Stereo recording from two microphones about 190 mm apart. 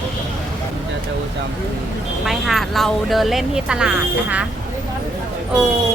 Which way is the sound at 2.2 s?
Centre (ahead or behind).